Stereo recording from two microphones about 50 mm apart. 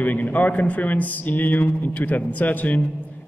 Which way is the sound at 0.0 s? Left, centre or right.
Left.